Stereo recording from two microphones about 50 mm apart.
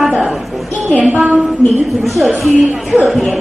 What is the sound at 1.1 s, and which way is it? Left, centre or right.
Speech, right.